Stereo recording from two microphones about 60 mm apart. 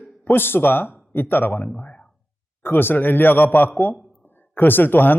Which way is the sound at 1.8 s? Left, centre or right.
Left.